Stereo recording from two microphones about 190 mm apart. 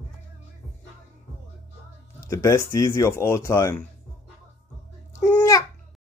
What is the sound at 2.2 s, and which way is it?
Speech, 15° left (ahead or behind).